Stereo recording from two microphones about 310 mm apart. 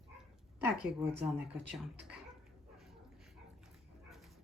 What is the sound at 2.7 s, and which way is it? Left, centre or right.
Dog, centre.